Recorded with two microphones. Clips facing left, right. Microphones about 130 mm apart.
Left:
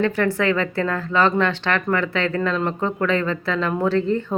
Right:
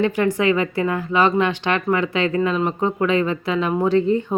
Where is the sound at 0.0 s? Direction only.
15° right (ahead or behind).